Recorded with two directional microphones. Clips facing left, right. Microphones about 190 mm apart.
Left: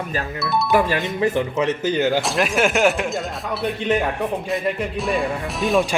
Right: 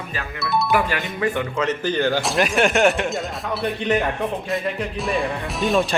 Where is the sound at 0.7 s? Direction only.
25° left (ahead or behind).